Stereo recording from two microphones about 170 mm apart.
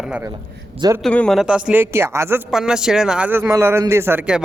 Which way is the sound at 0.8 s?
20° right (ahead or behind).